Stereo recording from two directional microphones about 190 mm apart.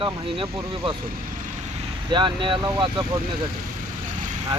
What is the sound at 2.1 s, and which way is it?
Speech, 25° right (ahead or behind).